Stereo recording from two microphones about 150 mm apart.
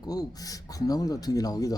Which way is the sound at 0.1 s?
25° left (ahead or behind).